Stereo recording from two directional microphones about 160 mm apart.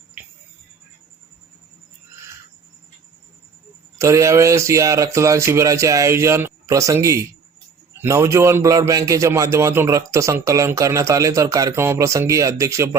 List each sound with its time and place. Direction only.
3.9 s a man's voice: 20° right (ahead or behind)